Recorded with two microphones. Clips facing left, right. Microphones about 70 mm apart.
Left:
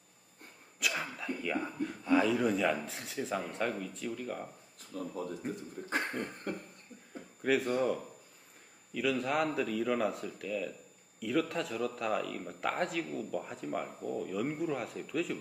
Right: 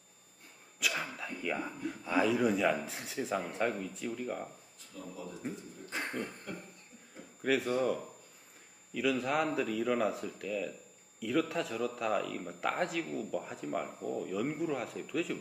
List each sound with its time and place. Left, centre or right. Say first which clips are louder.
0.8 s a man's voice: even; centre
4.8 s speech: left 6 dB; left
5.8 s beatboxing: left 6 dB; left
6.2 s a man's voice: left 1 dB; centre
7.4 s a man's voice: left 1 dB; centre